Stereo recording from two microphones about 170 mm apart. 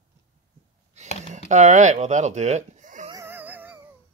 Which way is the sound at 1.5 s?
45° right (ahead or behind).